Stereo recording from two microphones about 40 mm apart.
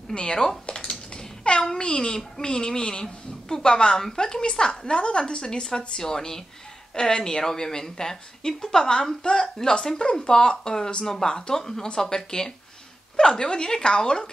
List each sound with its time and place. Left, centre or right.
0.1 s a woman's voice: centre
0.7 s typing: left
1.8 s a woman's voice: left